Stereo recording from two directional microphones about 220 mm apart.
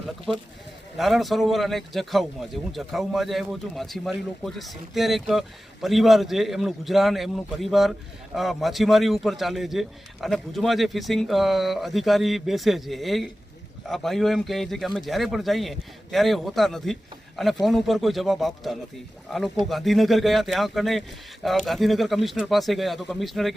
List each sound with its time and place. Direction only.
0.9 s speech: centre (ahead or behind)